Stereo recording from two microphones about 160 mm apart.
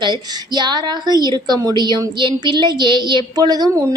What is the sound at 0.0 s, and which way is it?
A woman's voice, 30° right (ahead or behind).